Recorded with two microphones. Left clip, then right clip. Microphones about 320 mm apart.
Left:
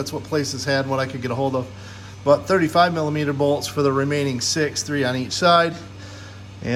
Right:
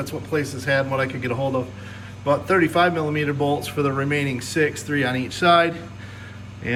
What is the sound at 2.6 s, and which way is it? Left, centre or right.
Speech, centre.